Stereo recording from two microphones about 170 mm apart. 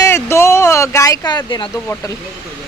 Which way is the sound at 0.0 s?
15° left (ahead or behind).